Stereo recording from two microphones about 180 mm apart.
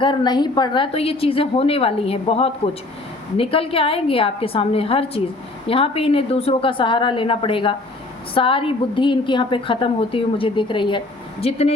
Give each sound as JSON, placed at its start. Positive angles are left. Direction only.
{"t": 0.0, "sound": "a woman's voice", "side_deg": 25}